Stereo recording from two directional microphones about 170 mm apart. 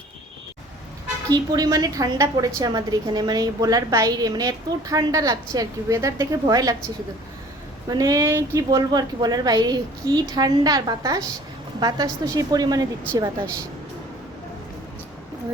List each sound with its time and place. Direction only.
1.3 s a woman's voice: 20° right (ahead or behind)
7.9 s a woman's voice: 20° right (ahead or behind)